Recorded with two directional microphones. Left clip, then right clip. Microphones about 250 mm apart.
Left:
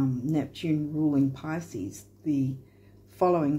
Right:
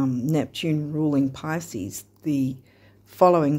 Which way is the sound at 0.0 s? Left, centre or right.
Right.